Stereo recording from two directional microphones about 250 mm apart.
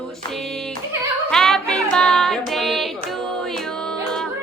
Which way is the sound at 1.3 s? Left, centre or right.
Centre.